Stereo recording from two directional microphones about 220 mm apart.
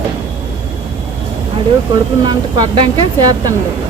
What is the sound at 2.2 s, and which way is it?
Speech, 20° right (ahead or behind).